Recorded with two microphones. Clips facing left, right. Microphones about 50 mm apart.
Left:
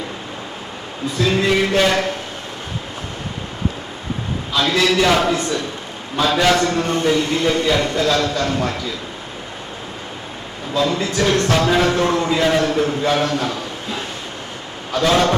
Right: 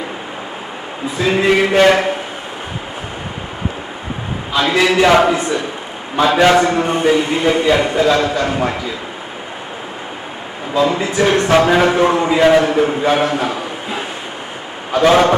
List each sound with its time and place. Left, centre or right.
1.0 s a man's voice: right
4.5 s a man's voice: right
10.8 s a man's voice: right